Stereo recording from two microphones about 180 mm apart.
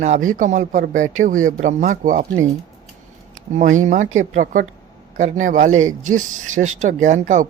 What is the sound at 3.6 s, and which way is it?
A man's voice, 45° right (ahead or behind).